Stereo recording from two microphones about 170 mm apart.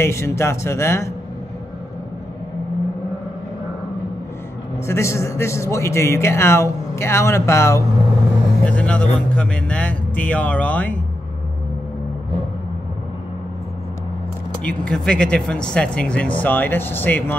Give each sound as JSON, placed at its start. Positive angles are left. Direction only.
{"t": 0.0, "sound": "a man's voice", "side_deg": 15}
{"t": 4.8, "sound": "a man's voice", "side_deg": 15}
{"t": 14.6, "sound": "a man's voice", "side_deg": 5}